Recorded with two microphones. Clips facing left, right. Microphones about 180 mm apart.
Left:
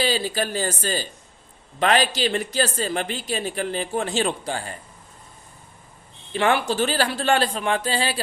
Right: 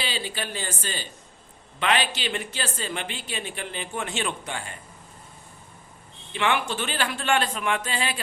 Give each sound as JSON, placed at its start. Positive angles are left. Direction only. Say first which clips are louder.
{"t": 0.0, "sound": "speech", "louder": "left 8 dB", "side_deg": 40}
{"t": 6.3, "sound": "speech", "louder": "left 5 dB", "side_deg": 35}